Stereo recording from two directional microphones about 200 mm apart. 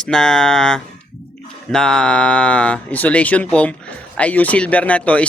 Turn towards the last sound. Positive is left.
turn(degrees=5)  # may be behind; listen again after turning